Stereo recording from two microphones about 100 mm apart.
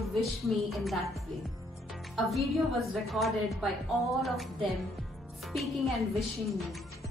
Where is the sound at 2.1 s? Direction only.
Centre (ahead or behind).